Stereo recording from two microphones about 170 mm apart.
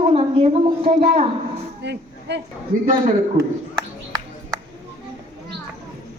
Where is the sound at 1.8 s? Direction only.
90° right.